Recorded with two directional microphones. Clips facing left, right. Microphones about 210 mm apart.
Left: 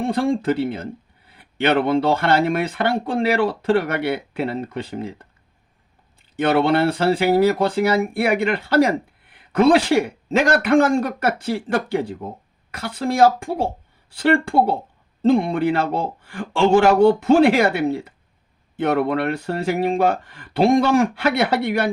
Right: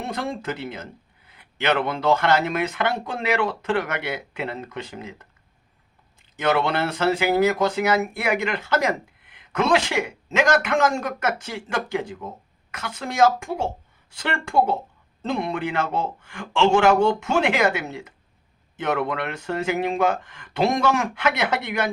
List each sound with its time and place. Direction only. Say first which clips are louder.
0.0 s speech: left 9 dB; 30° left (ahead or behind)